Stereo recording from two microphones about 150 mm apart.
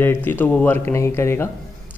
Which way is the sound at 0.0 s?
15° left (ahead or behind).